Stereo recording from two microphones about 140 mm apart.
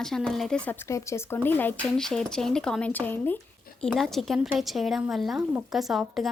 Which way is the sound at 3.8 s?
Centre (ahead or behind).